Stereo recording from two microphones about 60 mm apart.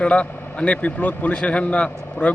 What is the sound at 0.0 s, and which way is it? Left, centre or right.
Speech, left.